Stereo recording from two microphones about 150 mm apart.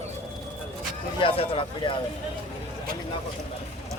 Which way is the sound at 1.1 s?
35° left (ahead or behind).